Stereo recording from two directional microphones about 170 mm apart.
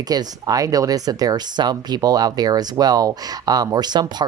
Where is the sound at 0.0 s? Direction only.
25° right (ahead or behind).